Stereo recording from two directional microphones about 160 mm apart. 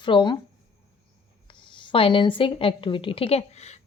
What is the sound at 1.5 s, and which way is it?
A woman's voice, 30° left (ahead or behind).